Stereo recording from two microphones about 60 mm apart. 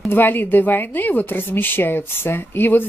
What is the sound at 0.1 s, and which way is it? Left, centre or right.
A woman's voice, left.